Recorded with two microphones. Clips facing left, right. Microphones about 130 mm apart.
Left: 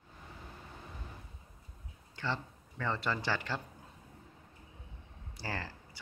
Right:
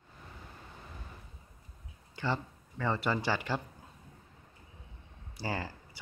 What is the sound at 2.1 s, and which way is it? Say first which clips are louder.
Speech: right 3 dB; 10° right (ahead or behind).